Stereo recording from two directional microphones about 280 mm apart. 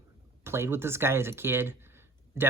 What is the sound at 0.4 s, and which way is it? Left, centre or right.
Speech, centre.